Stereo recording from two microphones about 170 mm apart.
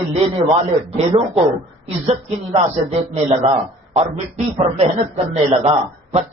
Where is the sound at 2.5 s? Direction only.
40° right (ahead or behind).